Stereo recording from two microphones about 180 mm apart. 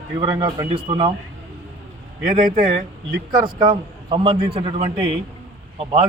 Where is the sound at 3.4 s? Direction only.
25° right (ahead or behind).